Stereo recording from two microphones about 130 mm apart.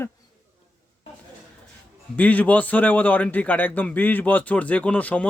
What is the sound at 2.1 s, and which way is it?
A man's voice, 10° left (ahead or behind).